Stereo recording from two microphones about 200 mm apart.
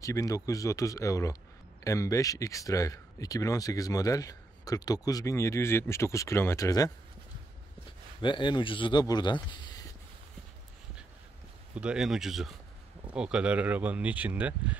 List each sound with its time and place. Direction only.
0.0 s speech: 15° left (ahead or behind)
8.2 s speech: 25° left (ahead or behind)
11.7 s speech: 5° right (ahead or behind)